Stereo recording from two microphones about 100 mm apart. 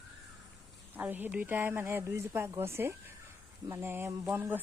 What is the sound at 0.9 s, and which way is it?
Speech, 15° right (ahead or behind).